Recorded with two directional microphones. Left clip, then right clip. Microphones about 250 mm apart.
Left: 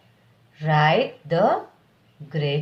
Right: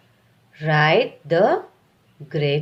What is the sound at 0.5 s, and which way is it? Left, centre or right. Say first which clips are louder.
Speech: right 2 dB; right.